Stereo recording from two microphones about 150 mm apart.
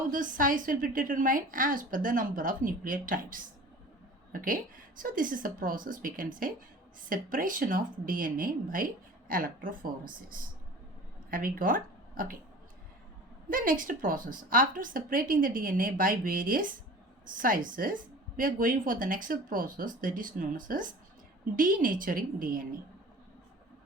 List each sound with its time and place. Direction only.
0.1 s a woman's voice: 65° right (ahead or behind)
13.5 s a woman's voice: 65° right (ahead or behind)